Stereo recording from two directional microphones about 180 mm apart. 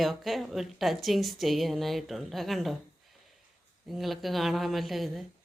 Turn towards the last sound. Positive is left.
turn(degrees=0)  # may be behind; listen again after turning